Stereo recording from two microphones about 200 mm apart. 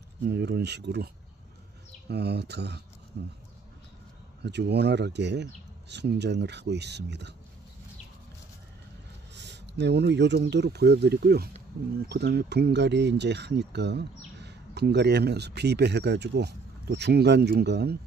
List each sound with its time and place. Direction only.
0.3 s speech: 55° right (ahead or behind)
4.4 s speech: 55° right (ahead or behind)
9.3 s speech: 60° right (ahead or behind)